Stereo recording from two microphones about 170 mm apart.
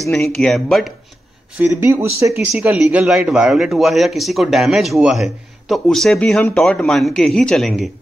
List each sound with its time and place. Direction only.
0.1 s a man's voice: 5° left (ahead or behind)
1.6 s speech: 15° right (ahead or behind)
2.5 s a man's voice: 5° right (ahead or behind)